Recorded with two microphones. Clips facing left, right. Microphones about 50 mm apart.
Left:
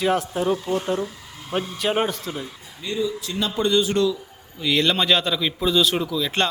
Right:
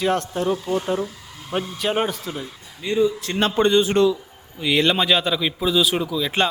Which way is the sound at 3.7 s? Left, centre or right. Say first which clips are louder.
Right 1 dB; right.